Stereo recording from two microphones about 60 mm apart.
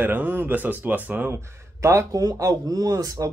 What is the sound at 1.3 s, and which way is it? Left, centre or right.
Speech, right.